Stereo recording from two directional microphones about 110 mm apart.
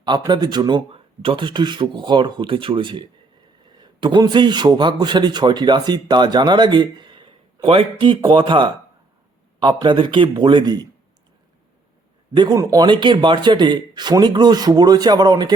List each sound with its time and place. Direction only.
0.0 s speech: 40° right (ahead or behind)
0.9 s a man's voice: 55° right (ahead or behind)
12.5 s speech: 30° right (ahead or behind)
12.9 s speech: 45° right (ahead or behind)